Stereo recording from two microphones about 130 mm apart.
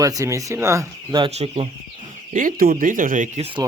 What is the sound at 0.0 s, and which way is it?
Speech, 25° right (ahead or behind).